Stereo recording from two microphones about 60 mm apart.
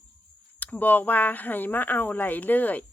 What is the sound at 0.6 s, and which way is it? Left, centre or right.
Speech, left.